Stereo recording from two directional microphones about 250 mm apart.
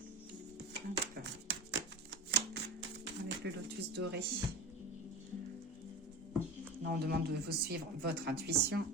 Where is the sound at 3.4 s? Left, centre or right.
Right.